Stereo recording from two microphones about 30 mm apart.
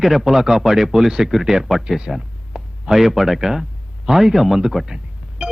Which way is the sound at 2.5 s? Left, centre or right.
Right.